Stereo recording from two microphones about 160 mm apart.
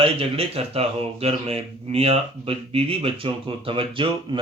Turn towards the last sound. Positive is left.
turn(degrees=-30)  # may be behind; listen again after turning